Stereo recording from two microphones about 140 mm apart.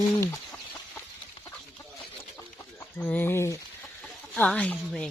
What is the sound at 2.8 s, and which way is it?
Speech, 15° left (ahead or behind).